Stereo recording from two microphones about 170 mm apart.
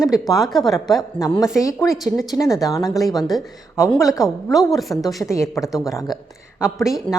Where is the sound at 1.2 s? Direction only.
20° left (ahead or behind).